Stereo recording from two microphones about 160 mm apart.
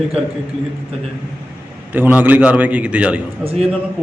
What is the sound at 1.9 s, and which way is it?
A man's voice, 10° right (ahead or behind).